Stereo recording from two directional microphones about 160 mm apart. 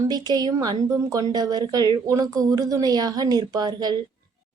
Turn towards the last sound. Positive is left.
turn(degrees=-25)  # may be behind; listen again after turning